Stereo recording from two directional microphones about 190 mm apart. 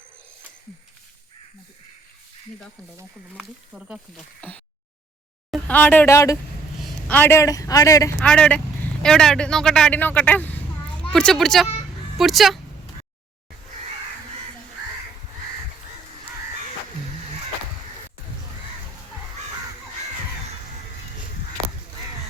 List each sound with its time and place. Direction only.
3.0 s a man's voice: 5° right (ahead or behind); by 8.1 s 15° left (ahead or behind)
8.2 s a man's voice: 5° left (ahead or behind)